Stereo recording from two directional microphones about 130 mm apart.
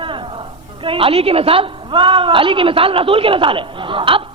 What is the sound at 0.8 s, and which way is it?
A woman's voice, 45° right (ahead or behind).